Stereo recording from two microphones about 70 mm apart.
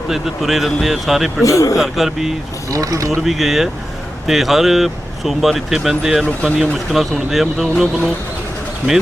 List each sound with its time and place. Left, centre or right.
0.1 s speech: centre
1.5 s a man's voice: left
1.8 s speech: centre
2.6 s speech: right
3.2 s speech: centre